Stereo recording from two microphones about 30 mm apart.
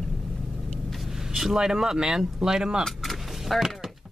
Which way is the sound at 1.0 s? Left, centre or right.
Centre.